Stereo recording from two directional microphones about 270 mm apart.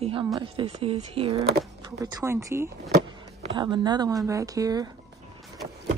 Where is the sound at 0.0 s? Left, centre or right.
Centre.